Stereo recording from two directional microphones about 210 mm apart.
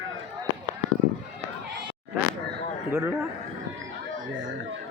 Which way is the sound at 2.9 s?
10° right (ahead or behind).